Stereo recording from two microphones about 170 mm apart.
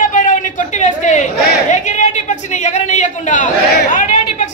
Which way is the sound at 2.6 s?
45° left (ahead or behind).